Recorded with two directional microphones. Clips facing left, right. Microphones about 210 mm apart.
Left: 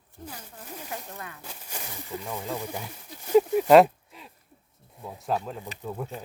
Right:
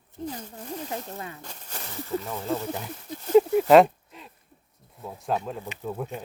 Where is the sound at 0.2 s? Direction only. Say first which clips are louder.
Right 8 dB; 25° right (ahead or behind).